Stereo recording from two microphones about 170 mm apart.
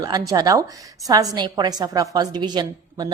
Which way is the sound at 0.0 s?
25° right (ahead or behind).